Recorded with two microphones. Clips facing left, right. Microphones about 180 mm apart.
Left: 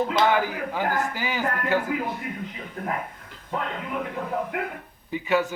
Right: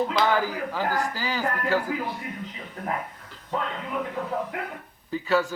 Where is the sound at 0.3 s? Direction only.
20° left (ahead or behind).